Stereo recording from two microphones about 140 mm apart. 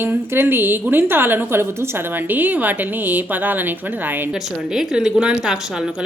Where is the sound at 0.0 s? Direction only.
15° right (ahead or behind).